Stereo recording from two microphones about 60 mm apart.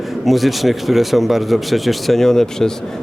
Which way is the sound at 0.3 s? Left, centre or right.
Centre.